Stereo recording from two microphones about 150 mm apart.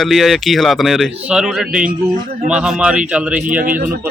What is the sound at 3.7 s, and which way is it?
Speech, 70° right (ahead or behind).